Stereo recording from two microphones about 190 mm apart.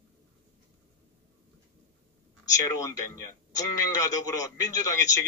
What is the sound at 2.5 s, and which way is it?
Speech, 15° left (ahead or behind).